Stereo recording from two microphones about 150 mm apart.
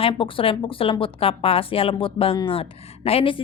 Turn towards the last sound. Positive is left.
turn(degrees=40)  # may be behind; listen again after turning